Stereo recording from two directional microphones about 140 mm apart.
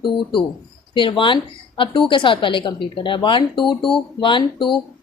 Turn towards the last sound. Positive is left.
turn(degrees=35)  # may be behind; listen again after turning